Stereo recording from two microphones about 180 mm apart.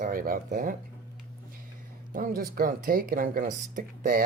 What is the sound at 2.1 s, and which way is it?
Speech, 50° right (ahead or behind).